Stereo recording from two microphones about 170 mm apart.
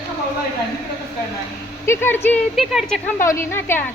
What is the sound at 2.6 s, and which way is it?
Speech, centre (ahead or behind).